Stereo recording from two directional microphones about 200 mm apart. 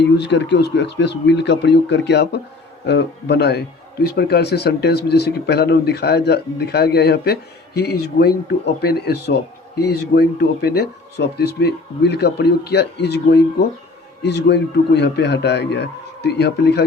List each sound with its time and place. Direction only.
0.0 s speech: 60° left (ahead or behind)